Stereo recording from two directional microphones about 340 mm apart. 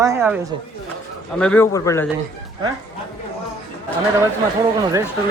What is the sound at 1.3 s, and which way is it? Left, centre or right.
Speech, centre.